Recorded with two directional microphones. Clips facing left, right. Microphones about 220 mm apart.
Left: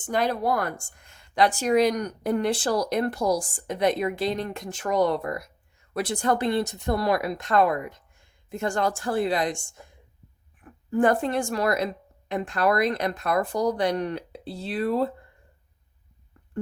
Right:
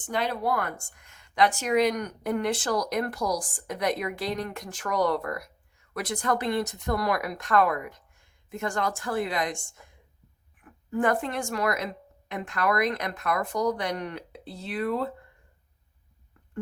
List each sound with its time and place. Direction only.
0.0 s speech: 45° left (ahead or behind)